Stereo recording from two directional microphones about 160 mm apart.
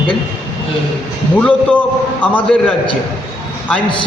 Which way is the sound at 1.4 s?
10° left (ahead or behind).